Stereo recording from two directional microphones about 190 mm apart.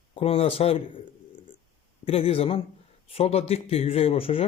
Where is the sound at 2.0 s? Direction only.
30° left (ahead or behind).